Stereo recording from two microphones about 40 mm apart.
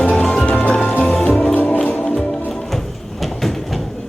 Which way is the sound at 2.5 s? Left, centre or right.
Centre.